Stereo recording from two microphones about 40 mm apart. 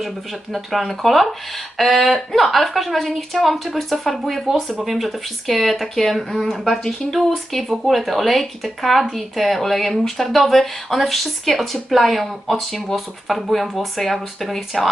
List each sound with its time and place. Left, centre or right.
0.5 s speech: centre
0.9 s speech: centre
4.4 s speech: centre
4.9 s speech: centre